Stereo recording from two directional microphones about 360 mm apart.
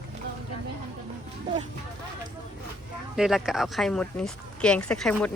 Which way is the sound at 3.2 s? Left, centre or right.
Centre.